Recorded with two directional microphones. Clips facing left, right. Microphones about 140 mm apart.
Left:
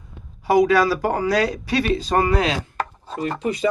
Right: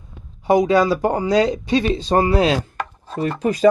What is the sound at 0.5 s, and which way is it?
Speech, 25° right (ahead or behind).